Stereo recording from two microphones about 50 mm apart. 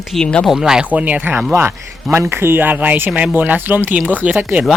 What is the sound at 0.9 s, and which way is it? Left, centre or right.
Speech, right.